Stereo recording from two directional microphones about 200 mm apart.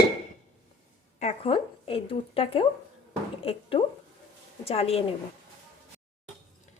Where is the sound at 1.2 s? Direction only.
30° left (ahead or behind).